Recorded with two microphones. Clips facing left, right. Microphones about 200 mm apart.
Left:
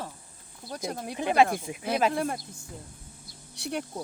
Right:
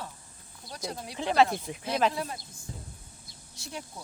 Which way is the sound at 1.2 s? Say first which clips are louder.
Left 1 dB; 10° left (ahead or behind).